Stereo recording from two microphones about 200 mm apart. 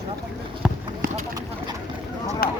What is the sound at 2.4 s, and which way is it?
Speech, 50° left (ahead or behind).